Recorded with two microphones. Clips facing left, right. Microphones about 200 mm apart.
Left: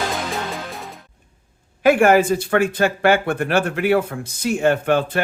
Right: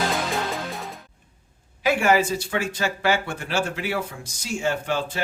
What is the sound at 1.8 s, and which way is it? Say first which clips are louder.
Speech: left 6 dB; 55° left (ahead or behind).